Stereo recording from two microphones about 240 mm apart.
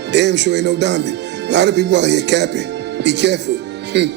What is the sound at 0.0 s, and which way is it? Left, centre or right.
Speech, right.